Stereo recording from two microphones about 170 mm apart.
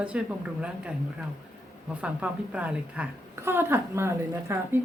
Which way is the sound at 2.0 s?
5° right (ahead or behind).